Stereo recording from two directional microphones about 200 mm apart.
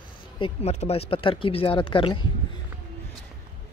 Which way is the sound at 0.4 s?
30° left (ahead or behind).